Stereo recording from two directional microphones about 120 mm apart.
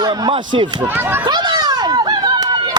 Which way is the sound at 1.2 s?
35° right (ahead or behind).